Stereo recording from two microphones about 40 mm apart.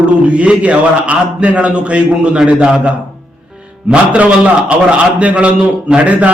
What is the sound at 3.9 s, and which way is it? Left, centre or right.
A man's voice, right.